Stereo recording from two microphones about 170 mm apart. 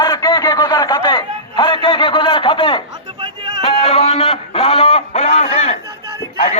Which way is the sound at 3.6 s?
35° left (ahead or behind).